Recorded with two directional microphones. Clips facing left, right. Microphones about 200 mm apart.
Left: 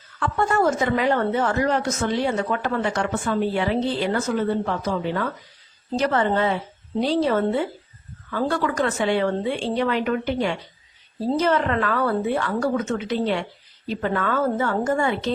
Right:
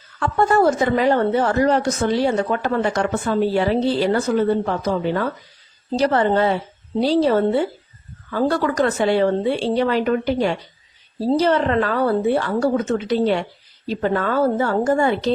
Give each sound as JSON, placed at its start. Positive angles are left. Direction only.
{"t": 0.2, "sound": "a woman's voice", "side_deg": -35}